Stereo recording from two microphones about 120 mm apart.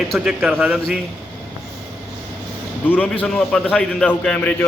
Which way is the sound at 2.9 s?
10° left (ahead or behind).